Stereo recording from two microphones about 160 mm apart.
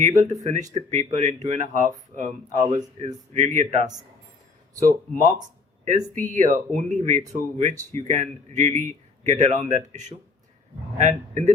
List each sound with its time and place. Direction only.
0.4 s speech: 50° right (ahead or behind)
4.8 s speech: 55° right (ahead or behind)